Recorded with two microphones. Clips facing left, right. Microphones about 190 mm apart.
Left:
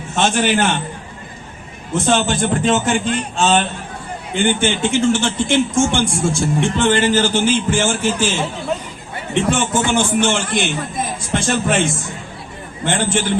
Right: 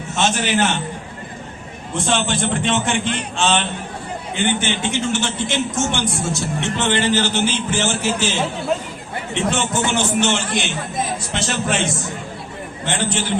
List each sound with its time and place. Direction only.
0.2 s a man's voice: 50° left (ahead or behind)
1.9 s a man's voice: 45° left (ahead or behind)
9.3 s a man's voice: 50° left (ahead or behind)